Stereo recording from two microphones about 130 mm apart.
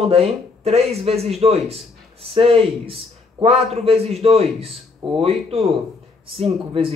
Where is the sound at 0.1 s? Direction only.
50° right (ahead or behind).